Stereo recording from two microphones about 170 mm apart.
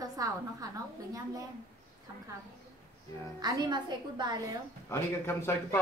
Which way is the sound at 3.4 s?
25° right (ahead or behind).